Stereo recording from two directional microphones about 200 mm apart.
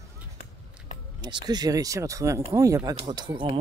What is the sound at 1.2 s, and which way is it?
Speech, 20° right (ahead or behind).